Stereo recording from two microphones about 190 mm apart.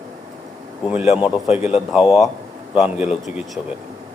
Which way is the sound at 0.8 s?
5° right (ahead or behind).